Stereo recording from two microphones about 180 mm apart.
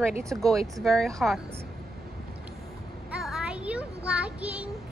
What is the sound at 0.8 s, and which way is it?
Speech, centre (ahead or behind).